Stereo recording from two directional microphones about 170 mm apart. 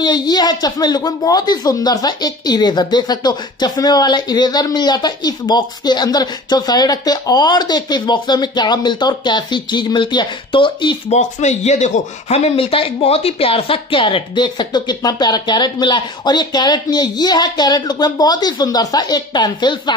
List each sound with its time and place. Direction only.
0.0 s speech: 25° left (ahead or behind)
11.1 s speech: 40° left (ahead or behind); by 20.0 s 25° left (ahead or behind)